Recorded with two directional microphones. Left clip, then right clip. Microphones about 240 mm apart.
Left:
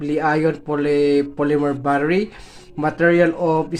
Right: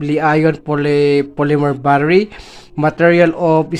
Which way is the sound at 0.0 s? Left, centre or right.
Right.